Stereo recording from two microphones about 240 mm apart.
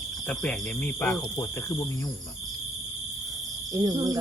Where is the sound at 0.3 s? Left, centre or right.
Centre.